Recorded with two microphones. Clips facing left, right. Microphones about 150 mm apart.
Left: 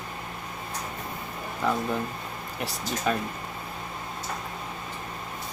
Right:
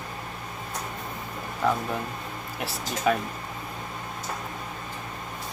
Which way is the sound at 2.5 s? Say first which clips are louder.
Even; 5° right (ahead or behind).